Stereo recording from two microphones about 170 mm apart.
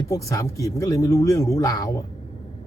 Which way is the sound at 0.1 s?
20° left (ahead or behind).